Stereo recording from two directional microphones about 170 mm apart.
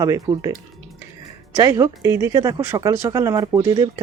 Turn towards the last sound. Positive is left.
turn(degrees=-25)  # may be behind; listen again after turning